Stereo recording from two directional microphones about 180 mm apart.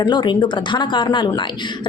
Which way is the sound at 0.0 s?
25° left (ahead or behind).